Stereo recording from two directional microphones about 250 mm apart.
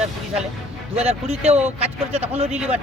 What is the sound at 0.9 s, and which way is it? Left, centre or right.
Speech, right.